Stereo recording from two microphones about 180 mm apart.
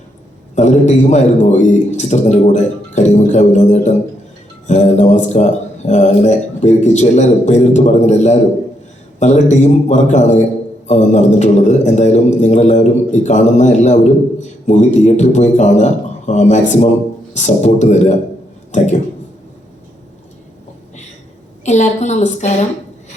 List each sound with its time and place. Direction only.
0.5 s a man's voice: 40° left (ahead or behind)
21.6 s a man's voice: 40° left (ahead or behind)